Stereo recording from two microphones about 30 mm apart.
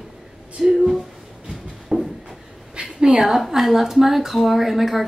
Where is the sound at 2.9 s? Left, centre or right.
Right.